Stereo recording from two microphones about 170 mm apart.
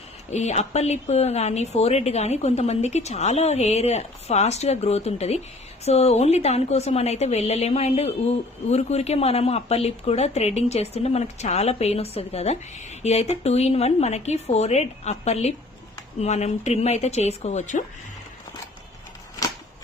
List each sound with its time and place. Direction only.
0.3 s speech: 40° left (ahead or behind)